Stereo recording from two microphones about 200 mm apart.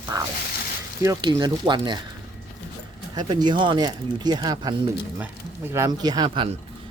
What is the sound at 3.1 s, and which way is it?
Speech, 20° right (ahead or behind).